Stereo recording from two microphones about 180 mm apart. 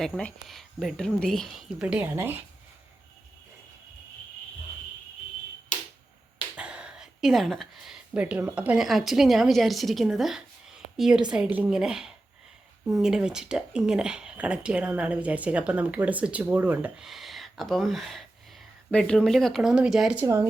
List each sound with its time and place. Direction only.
0.0 s speech: 5° left (ahead or behind)
5.7 s a sound: 45° left (ahead or behind)
6.6 s speech: 5° right (ahead or behind)
20.2 s speech: 15° right (ahead or behind)